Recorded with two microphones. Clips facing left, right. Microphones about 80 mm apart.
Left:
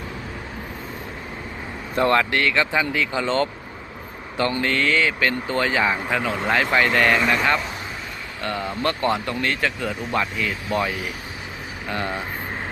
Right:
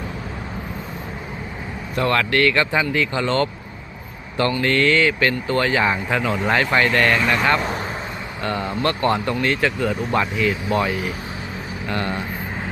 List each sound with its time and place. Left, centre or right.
2.0 s speech: left
2.3 s speech: centre
4.6 s speech: centre
8.4 s speech: centre
8.8 s speech: centre
11.9 s speech: centre